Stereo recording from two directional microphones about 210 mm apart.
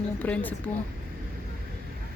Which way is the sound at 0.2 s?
5° left (ahead or behind).